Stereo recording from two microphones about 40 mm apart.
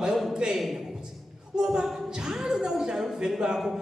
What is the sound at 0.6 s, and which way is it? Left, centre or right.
Speech, centre.